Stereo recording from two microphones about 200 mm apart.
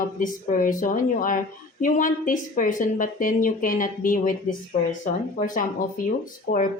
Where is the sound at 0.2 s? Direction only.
40° left (ahead or behind).